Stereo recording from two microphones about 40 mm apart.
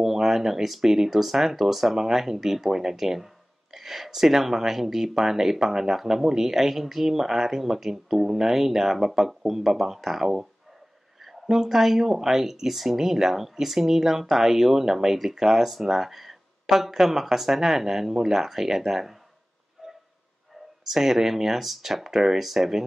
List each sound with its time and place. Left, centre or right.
0.0 s speech: centre
11.4 s speech: centre
19.8 s train: centre
20.9 s speech: centre